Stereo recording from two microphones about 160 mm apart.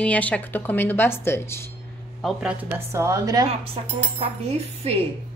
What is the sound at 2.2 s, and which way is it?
A woman's voice, 5° right (ahead or behind).